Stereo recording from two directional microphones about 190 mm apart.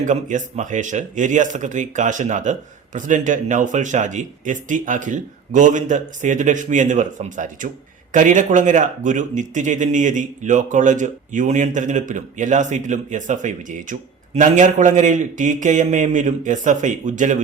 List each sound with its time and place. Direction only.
0.0 s speech: 40° right (ahead or behind)